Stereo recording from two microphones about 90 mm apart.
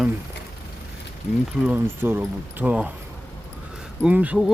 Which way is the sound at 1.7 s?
25° right (ahead or behind).